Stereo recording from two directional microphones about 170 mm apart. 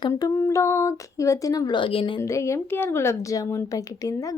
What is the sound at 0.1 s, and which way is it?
A woman's voice, 15° left (ahead or behind).